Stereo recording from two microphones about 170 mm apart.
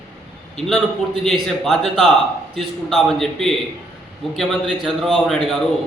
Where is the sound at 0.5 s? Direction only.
5° left (ahead or behind).